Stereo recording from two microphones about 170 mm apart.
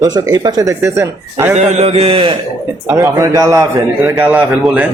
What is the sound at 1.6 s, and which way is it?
Speech, 45° right (ahead or behind).